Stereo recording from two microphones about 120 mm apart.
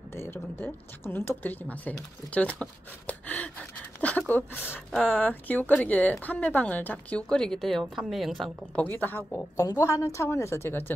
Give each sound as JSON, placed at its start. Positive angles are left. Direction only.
{"t": 0.1, "sound": "speech", "side_deg": 20}
{"t": 8.8, "sound": "speech", "side_deg": 15}
{"t": 9.8, "sound": "a woman's voice", "side_deg": 25}